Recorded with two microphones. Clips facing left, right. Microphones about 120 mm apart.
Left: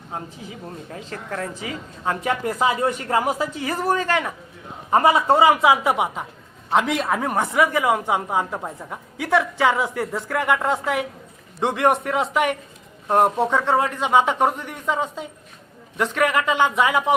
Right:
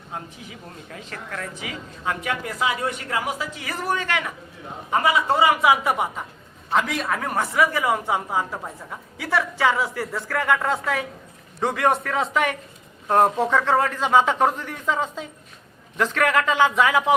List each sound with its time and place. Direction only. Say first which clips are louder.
0.1 s speech: left 3 dB; 30° left (ahead or behind)
5.4 s speech: left 2 dB; 20° left (ahead or behind)
16.7 s speech: even; 5° left (ahead or behind)